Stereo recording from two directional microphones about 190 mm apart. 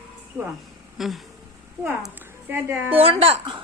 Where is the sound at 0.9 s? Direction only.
Centre (ahead or behind).